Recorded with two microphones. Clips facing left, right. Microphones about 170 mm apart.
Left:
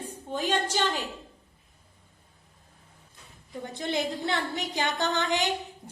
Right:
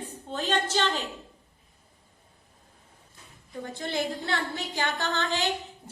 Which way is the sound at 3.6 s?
20° left (ahead or behind).